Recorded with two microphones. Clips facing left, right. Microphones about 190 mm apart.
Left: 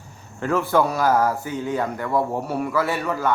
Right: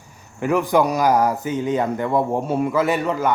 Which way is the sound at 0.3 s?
15° right (ahead or behind).